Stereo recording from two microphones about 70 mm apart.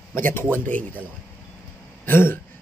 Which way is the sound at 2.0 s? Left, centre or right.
Left.